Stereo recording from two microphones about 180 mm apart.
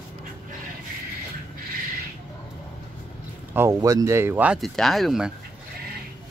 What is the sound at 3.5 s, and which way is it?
Speech, 15° right (ahead or behind).